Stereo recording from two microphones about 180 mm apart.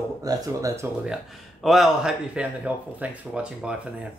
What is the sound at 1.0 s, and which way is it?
Speech, centre (ahead or behind).